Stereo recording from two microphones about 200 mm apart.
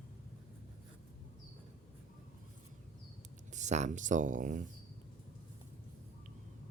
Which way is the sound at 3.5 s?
35° right (ahead or behind).